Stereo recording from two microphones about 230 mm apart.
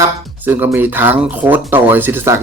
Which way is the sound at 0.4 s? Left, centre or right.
Centre.